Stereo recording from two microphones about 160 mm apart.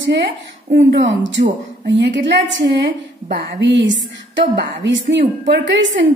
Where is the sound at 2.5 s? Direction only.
90° right.